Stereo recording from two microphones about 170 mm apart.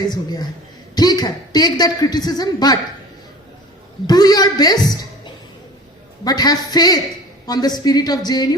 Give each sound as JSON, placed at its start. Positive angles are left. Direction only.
{"t": 0.1, "sound": "a woman's voice", "side_deg": 25}
{"t": 4.0, "sound": "speech", "side_deg": 25}
{"t": 6.2, "sound": "speech", "side_deg": 20}